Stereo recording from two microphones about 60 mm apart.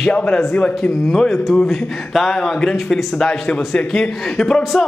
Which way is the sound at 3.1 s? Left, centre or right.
Centre.